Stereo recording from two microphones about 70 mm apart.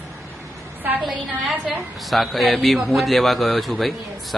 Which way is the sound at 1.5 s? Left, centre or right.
Centre.